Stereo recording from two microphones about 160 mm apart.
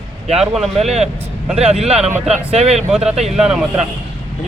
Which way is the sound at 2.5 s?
40° right (ahead or behind).